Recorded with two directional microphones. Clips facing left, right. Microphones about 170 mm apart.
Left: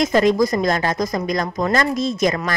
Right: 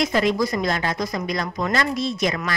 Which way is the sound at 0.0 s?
45° left (ahead or behind).